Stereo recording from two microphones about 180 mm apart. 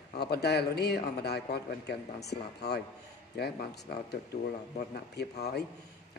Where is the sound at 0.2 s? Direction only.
65° left (ahead or behind).